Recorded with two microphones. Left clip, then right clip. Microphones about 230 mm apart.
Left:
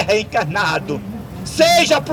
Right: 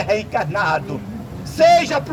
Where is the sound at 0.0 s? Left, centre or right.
Left.